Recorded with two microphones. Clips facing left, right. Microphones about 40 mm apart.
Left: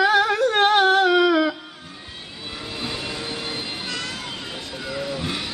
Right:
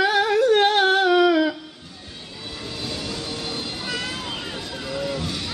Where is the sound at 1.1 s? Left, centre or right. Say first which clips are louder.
Even; centre.